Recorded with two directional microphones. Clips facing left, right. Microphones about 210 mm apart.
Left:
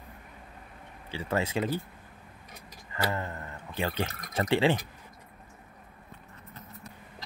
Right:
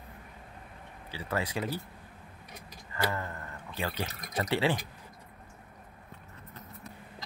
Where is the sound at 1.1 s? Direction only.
25° left (ahead or behind).